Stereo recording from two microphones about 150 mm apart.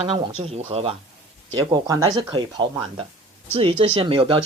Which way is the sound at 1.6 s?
25° right (ahead or behind).